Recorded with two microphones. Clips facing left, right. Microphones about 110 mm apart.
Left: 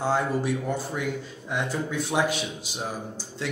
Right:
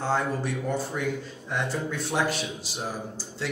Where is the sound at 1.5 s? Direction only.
Centre (ahead or behind).